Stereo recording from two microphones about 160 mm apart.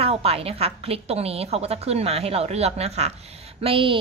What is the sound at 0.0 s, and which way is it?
A woman's voice, 40° right (ahead or behind).